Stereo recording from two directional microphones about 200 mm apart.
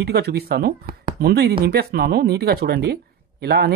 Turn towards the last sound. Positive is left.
turn(degrees=-50)  # may be behind; listen again after turning